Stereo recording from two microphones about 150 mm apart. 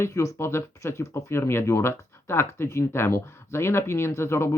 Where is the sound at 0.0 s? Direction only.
20° left (ahead or behind).